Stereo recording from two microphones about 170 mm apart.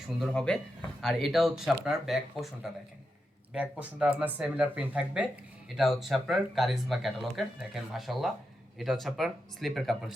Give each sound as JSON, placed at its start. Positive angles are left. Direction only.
{"t": 0.2, "sound": "speech", "side_deg": 0}
{"t": 3.5, "sound": "speech", "side_deg": -10}